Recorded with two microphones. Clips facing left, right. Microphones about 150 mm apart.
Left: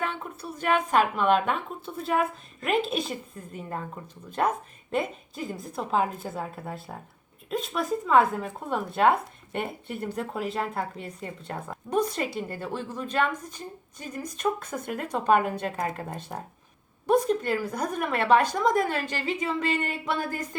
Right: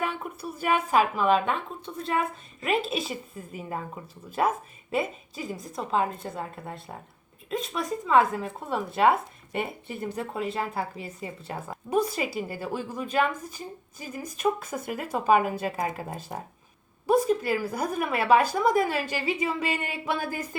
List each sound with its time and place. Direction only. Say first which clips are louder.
0.0 s a woman's voice: right 1 dB; 10° right (ahead or behind)